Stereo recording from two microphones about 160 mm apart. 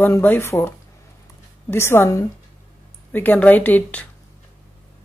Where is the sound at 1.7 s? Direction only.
15° left (ahead or behind).